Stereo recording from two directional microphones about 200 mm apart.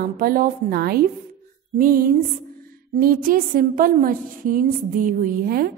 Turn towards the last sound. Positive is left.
turn(degrees=-45)  # may be behind; listen again after turning